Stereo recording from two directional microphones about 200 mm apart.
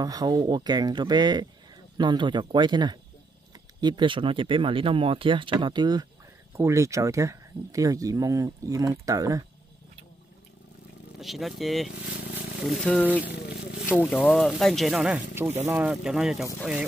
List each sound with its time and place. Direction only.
0.0 s speech: 20° right (ahead or behind)
11.1 s speech: centre (ahead or behind)